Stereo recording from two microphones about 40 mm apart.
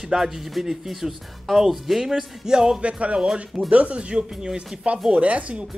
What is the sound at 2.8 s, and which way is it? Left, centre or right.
Speech, right.